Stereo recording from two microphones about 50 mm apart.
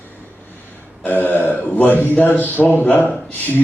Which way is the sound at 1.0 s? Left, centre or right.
Left.